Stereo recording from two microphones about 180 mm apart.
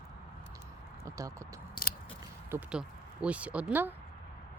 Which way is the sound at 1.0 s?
20° right (ahead or behind).